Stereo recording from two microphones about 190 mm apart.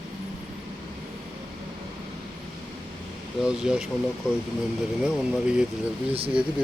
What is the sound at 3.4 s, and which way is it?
Speech, 5° right (ahead or behind).